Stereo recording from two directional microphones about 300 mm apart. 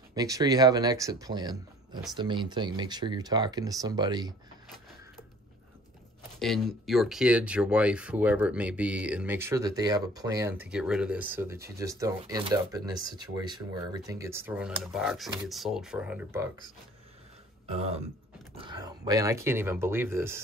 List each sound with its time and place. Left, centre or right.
0.1 s speech: centre
6.4 s speech: centre
17.6 s throat clearing: centre
18.6 s speech: centre